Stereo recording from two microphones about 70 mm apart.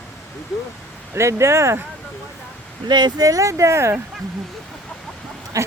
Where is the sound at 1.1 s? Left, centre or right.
Right.